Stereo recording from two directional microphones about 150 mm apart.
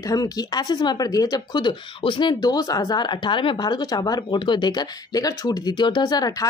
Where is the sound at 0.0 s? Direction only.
25° left (ahead or behind).